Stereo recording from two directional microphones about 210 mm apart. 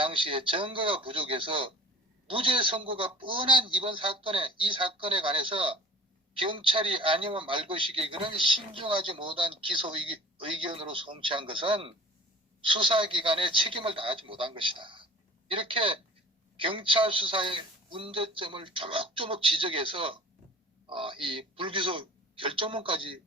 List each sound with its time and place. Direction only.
0.0 s a man's voice: 25° right (ahead or behind)